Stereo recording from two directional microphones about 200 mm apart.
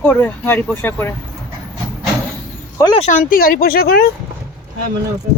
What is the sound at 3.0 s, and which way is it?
Speech, 40° left (ahead or behind).